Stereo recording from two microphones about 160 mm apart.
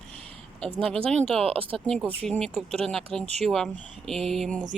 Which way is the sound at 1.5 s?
35° right (ahead or behind).